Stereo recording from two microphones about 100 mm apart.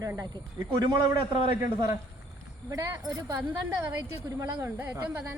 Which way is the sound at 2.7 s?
40° right (ahead or behind).